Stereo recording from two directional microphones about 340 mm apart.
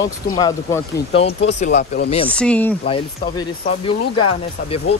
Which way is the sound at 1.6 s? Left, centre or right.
Left.